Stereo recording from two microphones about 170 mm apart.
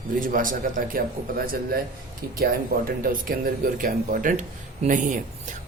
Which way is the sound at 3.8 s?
50° right (ahead or behind).